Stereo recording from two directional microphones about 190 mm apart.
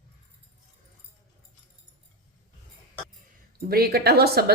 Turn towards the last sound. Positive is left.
turn(degrees=-55)  # may be behind; listen again after turning